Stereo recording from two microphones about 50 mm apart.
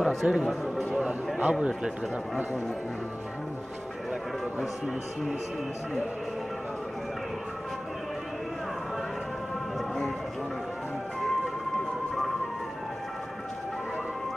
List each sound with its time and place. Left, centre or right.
0.0 s a man's voice: centre
1.4 s a man's voice: centre
9.8 s a sound: centre
11.1 s music: centre